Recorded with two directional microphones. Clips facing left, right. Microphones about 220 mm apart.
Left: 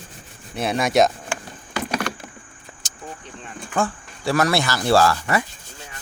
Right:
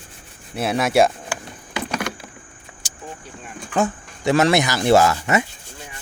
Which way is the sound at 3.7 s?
20° right (ahead or behind).